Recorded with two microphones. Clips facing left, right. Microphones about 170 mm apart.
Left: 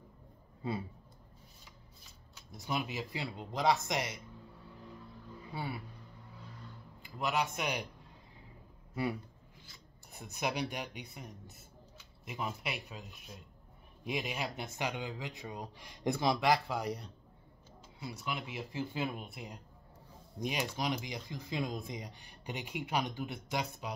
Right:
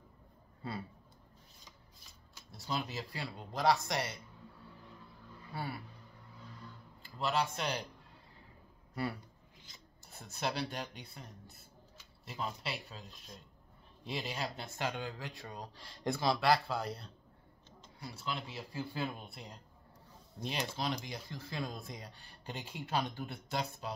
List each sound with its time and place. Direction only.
0.6 s speech: 20° left (ahead or behind)
2.5 s speech: 15° left (ahead or behind)
5.5 s speech: 15° left (ahead or behind)
7.0 s speech: 15° left (ahead or behind)
8.9 s speech: 15° left (ahead or behind)
14.0 s speech: 15° left (ahead or behind)